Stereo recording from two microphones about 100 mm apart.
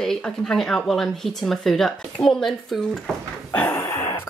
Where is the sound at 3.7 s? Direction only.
25° left (ahead or behind).